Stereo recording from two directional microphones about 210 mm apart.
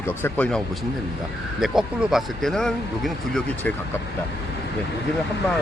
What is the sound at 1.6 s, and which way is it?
Speech, centre (ahead or behind).